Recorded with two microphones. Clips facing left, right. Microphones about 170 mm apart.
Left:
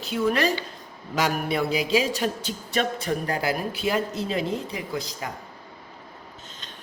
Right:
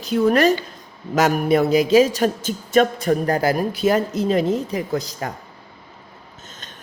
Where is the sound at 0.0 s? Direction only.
40° right (ahead or behind).